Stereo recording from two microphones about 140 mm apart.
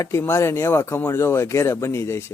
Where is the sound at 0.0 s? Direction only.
20° left (ahead or behind).